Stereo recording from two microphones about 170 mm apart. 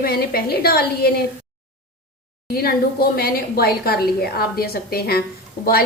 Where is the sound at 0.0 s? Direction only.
65° left (ahead or behind).